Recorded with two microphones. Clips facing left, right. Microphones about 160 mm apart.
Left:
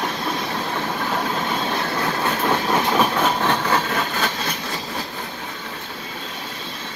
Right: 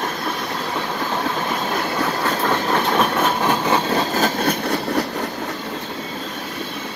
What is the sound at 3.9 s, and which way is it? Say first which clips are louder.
Vehicle: right 5 dB; 35° right (ahead or behind).